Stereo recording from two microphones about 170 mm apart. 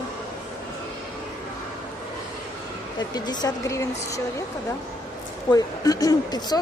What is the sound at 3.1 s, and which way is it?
Speech, 25° left (ahead or behind).